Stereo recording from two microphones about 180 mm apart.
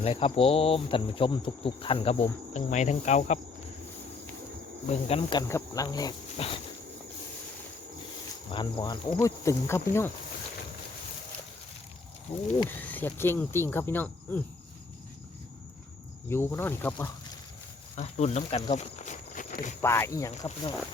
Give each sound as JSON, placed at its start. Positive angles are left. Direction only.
{"t": 0.0, "sound": "insect", "side_deg": 30}
{"t": 4.9, "sound": "insect", "side_deg": 35}
{"t": 5.4, "sound": "speech", "side_deg": 15}
{"t": 8.5, "sound": "speech", "side_deg": 25}
{"t": 12.3, "sound": "insect", "side_deg": 35}
{"t": 12.6, "sound": "speech", "side_deg": 10}
{"t": 16.3, "sound": "speech", "side_deg": 10}
{"t": 17.9, "sound": "speech", "side_deg": 35}
{"t": 19.8, "sound": "speech", "side_deg": 15}